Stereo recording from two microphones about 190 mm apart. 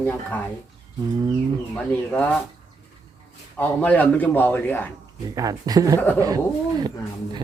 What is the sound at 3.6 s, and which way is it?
Speech, 10° left (ahead or behind).